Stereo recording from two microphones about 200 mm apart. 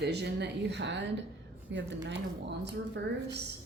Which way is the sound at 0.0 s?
55° right (ahead or behind).